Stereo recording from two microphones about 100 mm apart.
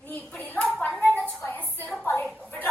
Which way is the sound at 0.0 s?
15° left (ahead or behind).